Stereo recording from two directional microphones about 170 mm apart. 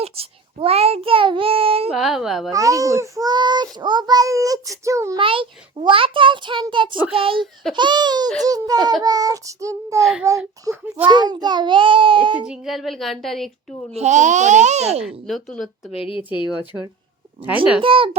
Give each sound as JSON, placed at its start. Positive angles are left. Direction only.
{"t": 0.0, "sound": "a child's voice", "side_deg": -35}
{"t": 1.9, "sound": "speech", "side_deg": 0}
{"t": 2.5, "sound": "a child's voice", "side_deg": -20}
{"t": 5.2, "sound": "a child's voice", "side_deg": -30}
{"t": 10.0, "sound": "speech", "side_deg": 0}
{"t": 10.2, "sound": "a child's voice", "side_deg": -15}
{"t": 11.1, "sound": "a child's voice", "side_deg": -25}
{"t": 12.5, "sound": "speech", "side_deg": 0}
{"t": 13.9, "sound": "a child's voice", "side_deg": -45}
{"t": 15.3, "sound": "speech", "side_deg": 0}
{"t": 15.9, "sound": "speech", "side_deg": 30}
{"t": 17.7, "sound": "a child's voice", "side_deg": -30}